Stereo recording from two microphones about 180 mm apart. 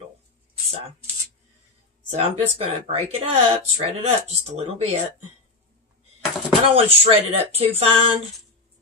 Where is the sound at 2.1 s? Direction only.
35° right (ahead or behind).